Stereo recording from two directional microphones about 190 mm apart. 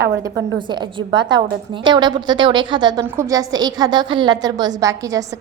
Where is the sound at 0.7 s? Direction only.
25° right (ahead or behind).